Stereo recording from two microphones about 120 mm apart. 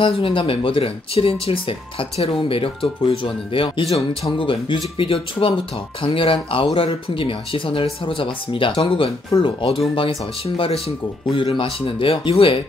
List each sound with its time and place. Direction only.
0.0 s speech: 45° left (ahead or behind)